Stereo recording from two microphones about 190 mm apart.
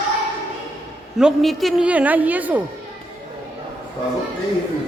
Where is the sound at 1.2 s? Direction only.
Centre (ahead or behind).